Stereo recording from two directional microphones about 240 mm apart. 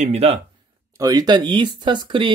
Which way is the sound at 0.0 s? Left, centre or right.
Right.